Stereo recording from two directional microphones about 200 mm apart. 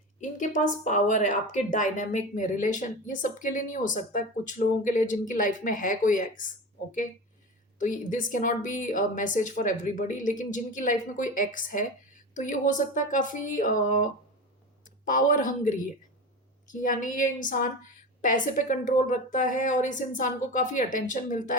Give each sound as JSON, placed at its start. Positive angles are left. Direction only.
{"t": 0.9, "sound": "a woman's voice", "side_deg": 40}
{"t": 7.8, "sound": "a woman's voice", "side_deg": 40}